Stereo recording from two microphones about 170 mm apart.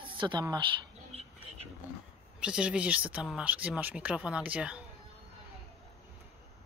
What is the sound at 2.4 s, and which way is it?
Speech, 5° right (ahead or behind).